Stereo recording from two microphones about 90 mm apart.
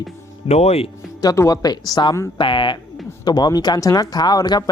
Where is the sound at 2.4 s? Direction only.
65° left (ahead or behind).